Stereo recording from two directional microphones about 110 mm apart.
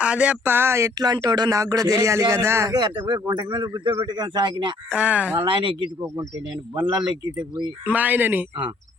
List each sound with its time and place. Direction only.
0.0 s speech: 10° right (ahead or behind); by 2.7 s 25° right (ahead or behind)
2.7 s speech: 40° right (ahead or behind)
4.9 s speech: 10° right (ahead or behind)
5.4 s speech: 50° right (ahead or behind)
7.9 s speech: 15° right (ahead or behind)